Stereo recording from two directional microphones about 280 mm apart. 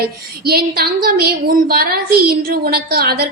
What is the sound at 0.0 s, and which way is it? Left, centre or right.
A woman's voice, right.